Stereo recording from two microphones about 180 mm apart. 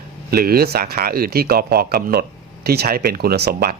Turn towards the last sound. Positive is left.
turn(degrees=-60)  # may be behind; listen again after turning